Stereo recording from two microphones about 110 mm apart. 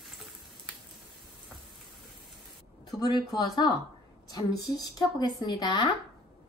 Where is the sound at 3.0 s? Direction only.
35° left (ahead or behind).